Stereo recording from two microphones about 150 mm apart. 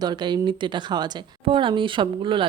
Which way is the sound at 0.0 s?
30° right (ahead or behind).